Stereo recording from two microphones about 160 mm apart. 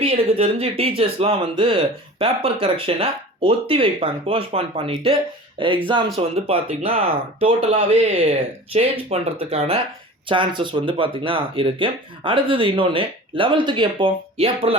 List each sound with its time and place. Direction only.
0.0 s speech: 40° right (ahead or behind)